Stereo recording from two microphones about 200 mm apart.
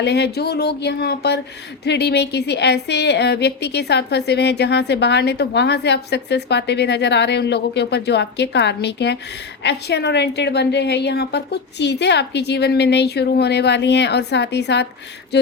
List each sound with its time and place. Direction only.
0.0 s a woman's voice: 60° left (ahead or behind)